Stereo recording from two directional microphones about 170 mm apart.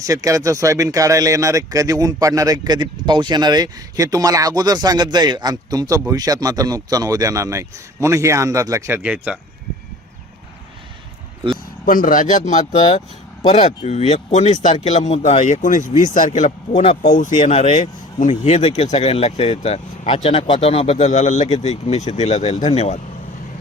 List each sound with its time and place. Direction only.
0.0 s speech: 20° right (ahead or behind)
11.9 s speech: 55° left (ahead or behind); by 17.0 s 35° left (ahead or behind)
17.1 s speech: 50° left (ahead or behind)